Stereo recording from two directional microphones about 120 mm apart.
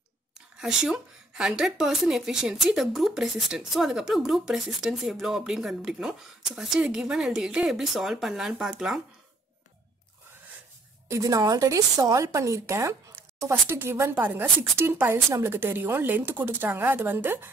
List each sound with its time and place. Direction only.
0.6 s a woman's voice: 5° right (ahead or behind)
11.1 s a woman's voice: 30° right (ahead or behind)